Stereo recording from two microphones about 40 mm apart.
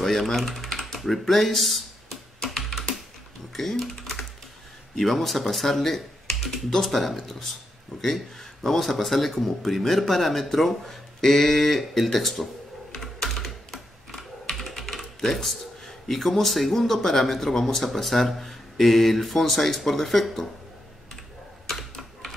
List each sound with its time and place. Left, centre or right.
0.0 s speech: centre
0.7 s typing: centre
0.9 s computer keyboard: centre
3.5 s typing: centre
4.9 s speech: centre
12.9 s typing: centre
16.1 s speech: centre
21.6 s typing: centre